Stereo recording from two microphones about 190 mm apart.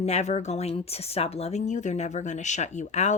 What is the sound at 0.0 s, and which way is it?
Speech, 35° left (ahead or behind).